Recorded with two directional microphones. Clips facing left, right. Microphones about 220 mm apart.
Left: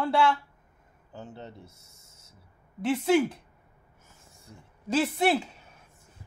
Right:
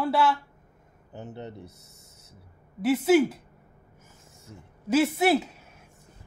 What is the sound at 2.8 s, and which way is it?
Speech, 5° right (ahead or behind).